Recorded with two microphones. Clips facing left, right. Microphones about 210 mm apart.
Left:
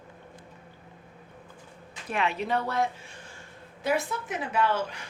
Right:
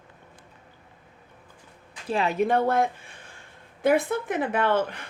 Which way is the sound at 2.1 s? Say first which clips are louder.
Right 3 dB; 35° right (ahead or behind).